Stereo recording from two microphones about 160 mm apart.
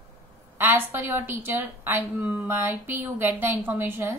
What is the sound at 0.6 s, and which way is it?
A woman's voice, 15° right (ahead or behind).